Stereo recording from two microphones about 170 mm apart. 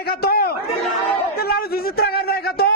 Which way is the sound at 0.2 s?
65° left (ahead or behind).